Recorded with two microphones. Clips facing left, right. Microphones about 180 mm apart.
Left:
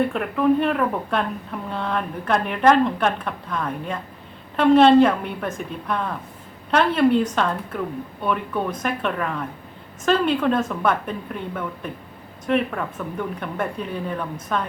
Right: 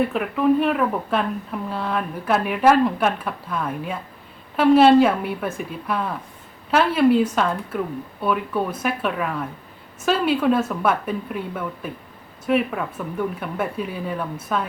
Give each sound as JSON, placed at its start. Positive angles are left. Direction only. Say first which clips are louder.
{"t": 0.0, "sound": "a woman's voice", "louder": "even", "side_deg": -5}